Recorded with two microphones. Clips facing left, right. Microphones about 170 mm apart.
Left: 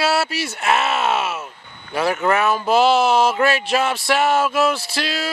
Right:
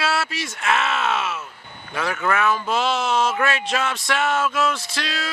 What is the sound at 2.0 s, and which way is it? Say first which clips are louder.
Speech: left 5 dB; 30° left (ahead or behind).